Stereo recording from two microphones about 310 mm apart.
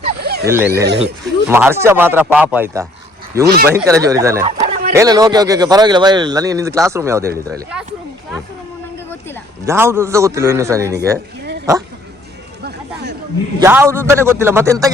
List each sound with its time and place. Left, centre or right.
0.2 s a sound: right
0.4 s speech: centre
3.4 s speech: right
3.7 s speech: centre
4.6 s a sound: right
4.9 s speech: centre
9.6 s speech: centre
12.6 s chatter: right
13.6 s speech: centre